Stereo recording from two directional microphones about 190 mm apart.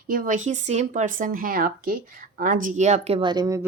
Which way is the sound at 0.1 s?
45° right (ahead or behind).